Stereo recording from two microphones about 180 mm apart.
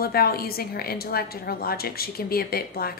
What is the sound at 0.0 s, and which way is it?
A woman's voice, 55° left (ahead or behind).